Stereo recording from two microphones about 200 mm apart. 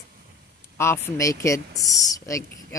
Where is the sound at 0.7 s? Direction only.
15° left (ahead or behind).